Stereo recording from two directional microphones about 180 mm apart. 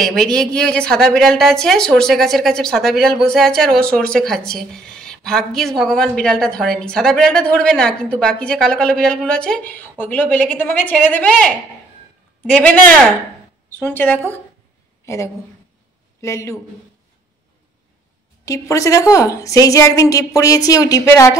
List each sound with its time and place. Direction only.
0.0 s speech: 5° left (ahead or behind)
12.5 s speech: 5° left (ahead or behind)
16.2 s a man's voice: 15° left (ahead or behind)
18.4 s a woman's voice: 15° left (ahead or behind)